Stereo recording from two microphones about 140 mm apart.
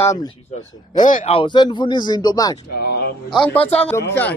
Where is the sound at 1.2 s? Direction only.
35° left (ahead or behind).